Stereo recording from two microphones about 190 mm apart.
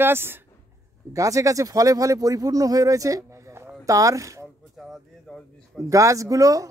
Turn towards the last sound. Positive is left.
turn(degrees=-15)  # may be behind; listen again after turning